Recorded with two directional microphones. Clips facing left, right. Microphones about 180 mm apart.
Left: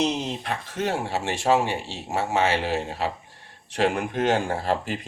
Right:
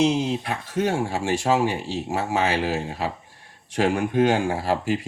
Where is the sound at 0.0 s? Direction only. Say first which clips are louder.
Right 4 dB; 10° right (ahead or behind).